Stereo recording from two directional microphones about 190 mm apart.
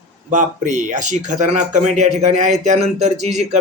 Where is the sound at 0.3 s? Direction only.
40° right (ahead or behind).